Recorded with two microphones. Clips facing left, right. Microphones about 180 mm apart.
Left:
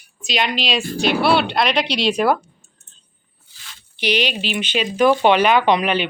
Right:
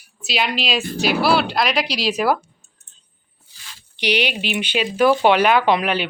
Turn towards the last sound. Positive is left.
turn(degrees=-5)  # may be behind; listen again after turning